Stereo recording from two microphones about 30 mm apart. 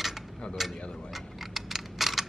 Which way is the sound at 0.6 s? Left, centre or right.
Centre.